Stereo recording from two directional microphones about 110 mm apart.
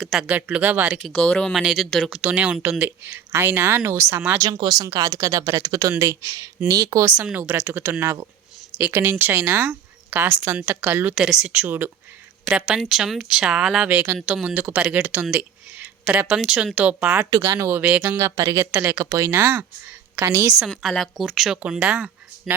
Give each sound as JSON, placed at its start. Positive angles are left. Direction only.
{"t": 0.0, "sound": "a woman's voice", "side_deg": 0}
{"t": 0.3, "sound": "speech", "side_deg": -10}
{"t": 1.1, "sound": "speech", "side_deg": 10}
{"t": 1.5, "sound": "speech", "side_deg": -5}
{"t": 4.6, "sound": "speech", "side_deg": -35}
{"t": 7.2, "sound": "speech", "side_deg": -15}
{"t": 15.3, "sound": "a sound", "side_deg": -15}
{"t": 16.4, "sound": "speech", "side_deg": 0}
{"t": 17.2, "sound": "speech", "side_deg": -35}
{"t": 18.2, "sound": "speech", "side_deg": -30}
{"t": 18.7, "sound": "speech", "side_deg": -20}
{"t": 20.6, "sound": "a woman's voice", "side_deg": 0}
{"t": 21.6, "sound": "speech", "side_deg": -10}